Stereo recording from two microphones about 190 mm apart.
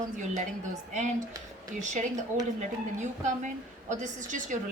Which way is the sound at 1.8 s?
40° right (ahead or behind).